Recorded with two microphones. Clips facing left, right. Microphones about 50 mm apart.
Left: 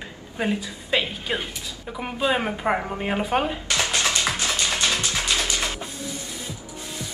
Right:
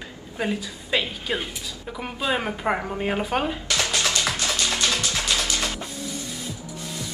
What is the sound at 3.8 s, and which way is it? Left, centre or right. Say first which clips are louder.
Music: left 1 dB; centre.